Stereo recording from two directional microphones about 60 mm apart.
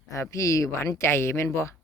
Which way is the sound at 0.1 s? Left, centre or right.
Left.